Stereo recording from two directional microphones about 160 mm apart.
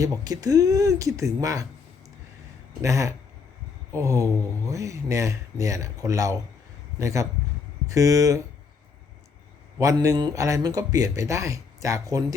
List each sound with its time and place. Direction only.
0.0 s speech: 20° right (ahead or behind)
2.8 s speech: 20° right (ahead or behind)
9.7 s speech: 20° right (ahead or behind)